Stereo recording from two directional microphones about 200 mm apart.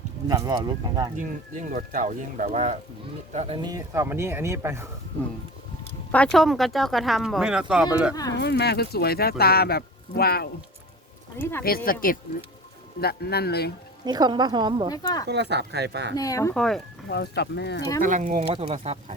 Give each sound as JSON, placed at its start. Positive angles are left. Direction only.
{"t": 0.3, "sound": "speech", "side_deg": -20}
{"t": 1.1, "sound": "speech", "side_deg": -40}
{"t": 3.7, "sound": "speech", "side_deg": -15}
{"t": 6.3, "sound": "speech", "side_deg": 0}
{"t": 8.1, "sound": "speech", "side_deg": 20}
{"t": 8.4, "sound": "speech", "side_deg": 60}
{"t": 11.9, "sound": "speech", "side_deg": 45}
{"t": 14.0, "sound": "speech", "side_deg": -20}
{"t": 14.8, "sound": "speech", "side_deg": 20}
{"t": 15.3, "sound": "speech", "side_deg": -60}
{"t": 16.1, "sound": "speech", "side_deg": 15}
{"t": 16.6, "sound": "speech", "side_deg": 0}
{"t": 17.1, "sound": "speech", "side_deg": 55}
{"t": 18.0, "sound": "speech", "side_deg": -40}